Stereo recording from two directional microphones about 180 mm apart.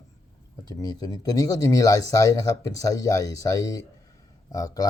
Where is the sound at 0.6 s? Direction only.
20° left (ahead or behind).